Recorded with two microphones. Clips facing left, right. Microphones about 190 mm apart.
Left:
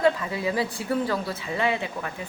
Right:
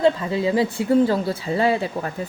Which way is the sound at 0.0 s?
25° right (ahead or behind).